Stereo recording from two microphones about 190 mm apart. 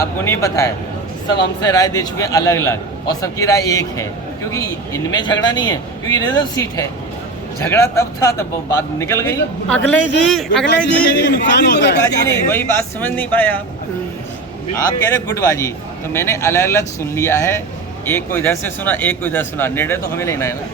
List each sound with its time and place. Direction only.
0.0 s speech: 15° left (ahead or behind)
5.1 s speech: 20° left (ahead or behind); by 10.7 s 5° left (ahead or behind)
10.8 s speech: 65° left (ahead or behind)
12.0 s speech: 10° left (ahead or behind)
14.8 s speech: 15° left (ahead or behind)